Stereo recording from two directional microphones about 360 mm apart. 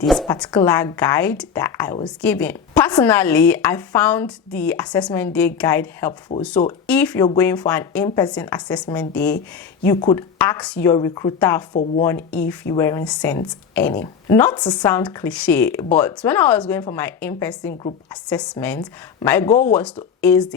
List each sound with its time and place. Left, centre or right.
0.0 s a woman's voice: centre
11.7 s speech: left
12.0 s a woman's voice: centre